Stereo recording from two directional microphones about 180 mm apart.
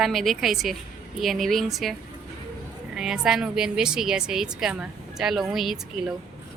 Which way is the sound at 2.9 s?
5° right (ahead or behind).